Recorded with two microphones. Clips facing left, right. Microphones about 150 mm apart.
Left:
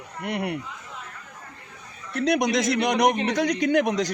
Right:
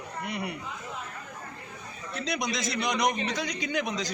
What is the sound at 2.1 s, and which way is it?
A man's voice, 65° left (ahead or behind).